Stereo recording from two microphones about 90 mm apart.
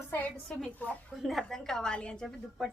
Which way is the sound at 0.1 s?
20° left (ahead or behind).